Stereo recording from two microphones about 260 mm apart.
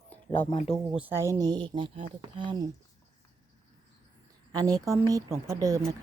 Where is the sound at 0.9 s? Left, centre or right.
Centre.